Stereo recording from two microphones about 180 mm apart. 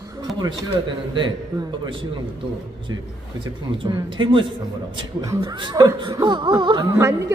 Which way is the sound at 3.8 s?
25° right (ahead or behind).